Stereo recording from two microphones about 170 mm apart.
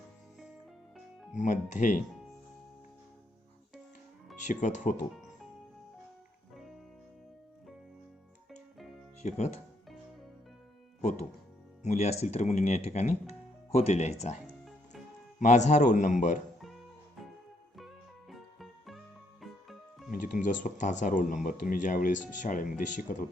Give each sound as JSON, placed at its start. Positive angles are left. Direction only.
{"t": 0.9, "sound": "music", "side_deg": 0}
{"t": 1.4, "sound": "speech", "side_deg": 45}
{"t": 4.4, "sound": "speech", "side_deg": 45}
{"t": 9.2, "sound": "speech", "side_deg": 45}
{"t": 11.8, "sound": "speech", "side_deg": 40}
{"t": 15.4, "sound": "speech", "side_deg": 45}
{"t": 17.7, "sound": "music", "side_deg": 0}
{"t": 20.1, "sound": "speech", "side_deg": 50}